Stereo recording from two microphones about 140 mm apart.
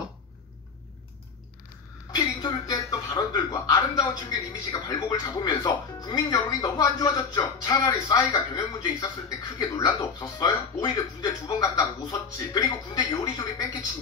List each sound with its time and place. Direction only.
2.1 s speech: 30° left (ahead or behind)